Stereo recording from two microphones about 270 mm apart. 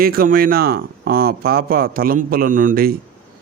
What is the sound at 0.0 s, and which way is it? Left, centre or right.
A man's voice, right.